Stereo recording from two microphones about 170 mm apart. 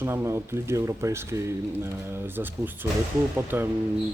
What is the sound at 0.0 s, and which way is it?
Speech, 15° right (ahead or behind).